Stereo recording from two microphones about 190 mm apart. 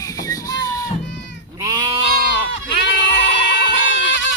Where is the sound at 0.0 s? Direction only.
20° left (ahead or behind).